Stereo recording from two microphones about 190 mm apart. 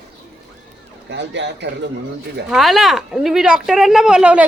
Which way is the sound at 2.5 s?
Centre (ahead or behind).